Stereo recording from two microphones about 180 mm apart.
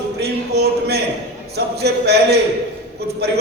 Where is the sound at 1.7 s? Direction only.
65° right (ahead or behind).